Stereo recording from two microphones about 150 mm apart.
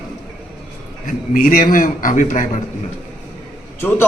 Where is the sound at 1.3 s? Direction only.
70° left (ahead or behind).